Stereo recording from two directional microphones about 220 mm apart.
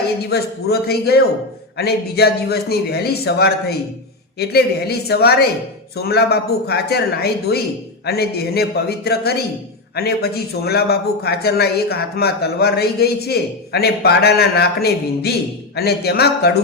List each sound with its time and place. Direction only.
0.3 s a man's voice: 45° left (ahead or behind)